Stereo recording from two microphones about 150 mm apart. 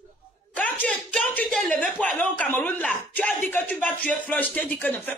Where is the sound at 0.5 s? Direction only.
10° left (ahead or behind).